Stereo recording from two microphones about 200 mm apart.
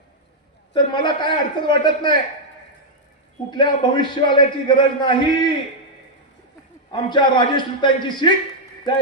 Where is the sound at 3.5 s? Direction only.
25° left (ahead or behind).